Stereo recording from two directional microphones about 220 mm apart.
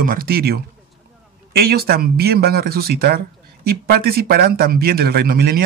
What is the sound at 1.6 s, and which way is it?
Speech, 45° right (ahead or behind).